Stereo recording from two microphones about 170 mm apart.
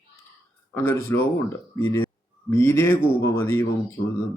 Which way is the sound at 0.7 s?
15° left (ahead or behind).